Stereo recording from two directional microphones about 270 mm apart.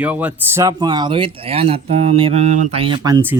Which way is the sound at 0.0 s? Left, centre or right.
Centre.